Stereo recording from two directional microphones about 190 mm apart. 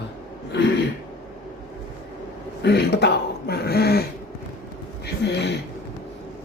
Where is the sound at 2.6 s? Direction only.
60° left (ahead or behind).